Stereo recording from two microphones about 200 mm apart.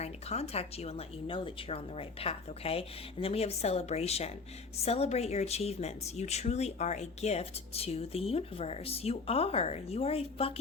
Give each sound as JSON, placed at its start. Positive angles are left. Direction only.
{"t": 0.0, "sound": "speech", "side_deg": 30}